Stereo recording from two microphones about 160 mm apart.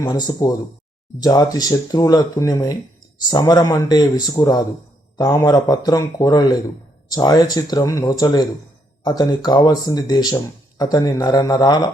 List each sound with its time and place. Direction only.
0.0 s speech: 20° left (ahead or behind)